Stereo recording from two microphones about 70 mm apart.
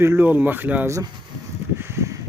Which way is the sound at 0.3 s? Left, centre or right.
Right.